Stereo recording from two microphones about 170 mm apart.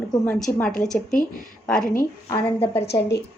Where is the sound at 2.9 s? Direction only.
75° left (ahead or behind).